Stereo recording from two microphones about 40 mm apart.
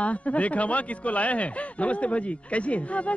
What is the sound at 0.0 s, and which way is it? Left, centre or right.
A man's voice, left.